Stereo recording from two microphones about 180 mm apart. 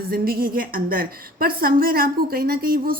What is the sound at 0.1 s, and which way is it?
A woman's voice, 55° right (ahead or behind).